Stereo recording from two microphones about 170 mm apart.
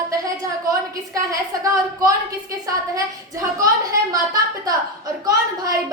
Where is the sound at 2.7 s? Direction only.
20° right (ahead or behind).